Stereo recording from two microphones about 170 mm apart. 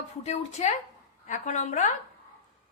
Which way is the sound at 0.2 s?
40° left (ahead or behind).